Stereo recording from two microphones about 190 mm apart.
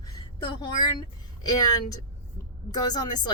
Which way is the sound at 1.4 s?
20° left (ahead or behind).